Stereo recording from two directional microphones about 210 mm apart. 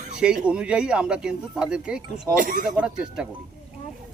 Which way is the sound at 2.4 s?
40° right (ahead or behind).